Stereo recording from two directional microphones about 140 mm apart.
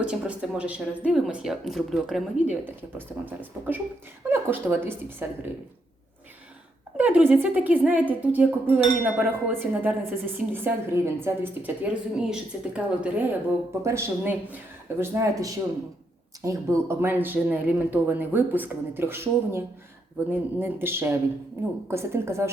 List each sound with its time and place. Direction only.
0.0 s speech: 5° right (ahead or behind)
4.3 s speech: 15° right (ahead or behind)
6.9 s speech: 10° right (ahead or behind)
13.8 s a woman's voice: 20° right (ahead or behind)